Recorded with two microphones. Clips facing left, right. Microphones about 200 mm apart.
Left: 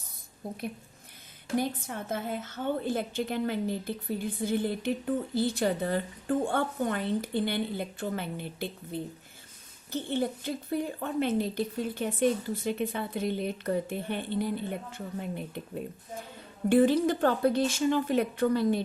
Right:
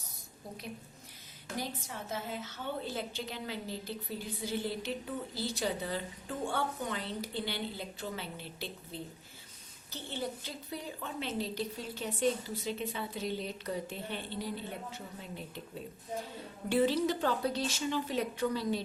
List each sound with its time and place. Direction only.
0.4 s a woman's voice: 50° left (ahead or behind)